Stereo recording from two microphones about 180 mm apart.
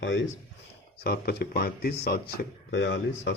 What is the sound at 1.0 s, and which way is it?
Speech, 60° left (ahead or behind).